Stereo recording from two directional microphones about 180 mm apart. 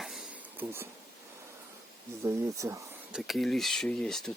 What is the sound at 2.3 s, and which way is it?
Speech, 15° right (ahead or behind).